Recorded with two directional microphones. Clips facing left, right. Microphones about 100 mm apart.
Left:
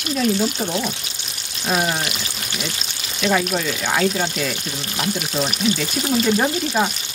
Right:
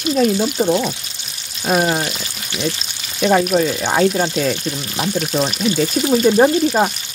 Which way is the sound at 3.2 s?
35° right (ahead or behind).